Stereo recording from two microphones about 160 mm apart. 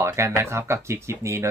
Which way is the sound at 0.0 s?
15° right (ahead or behind).